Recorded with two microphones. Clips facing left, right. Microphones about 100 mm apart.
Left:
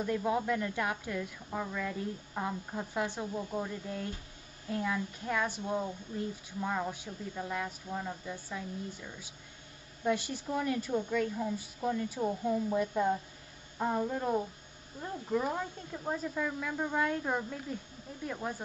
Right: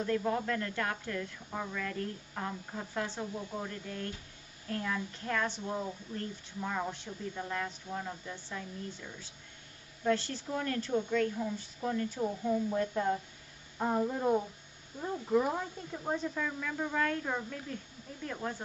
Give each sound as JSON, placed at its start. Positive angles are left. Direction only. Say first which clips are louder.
{"t": 0.0, "sound": "speech", "louder": "even", "side_deg": 10}
{"t": 16.3, "sound": "speech", "louder": "left 1 dB", "side_deg": 10}